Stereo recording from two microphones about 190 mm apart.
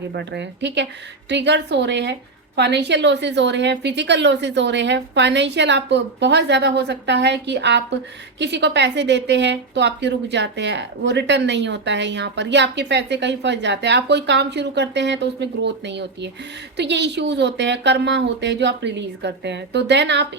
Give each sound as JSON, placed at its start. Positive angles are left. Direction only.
{"t": 0.1, "sound": "a woman's voice", "side_deg": -65}